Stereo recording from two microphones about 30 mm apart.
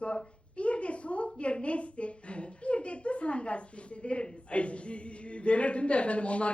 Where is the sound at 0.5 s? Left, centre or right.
Left.